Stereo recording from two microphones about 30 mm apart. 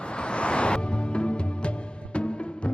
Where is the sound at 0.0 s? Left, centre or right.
Left.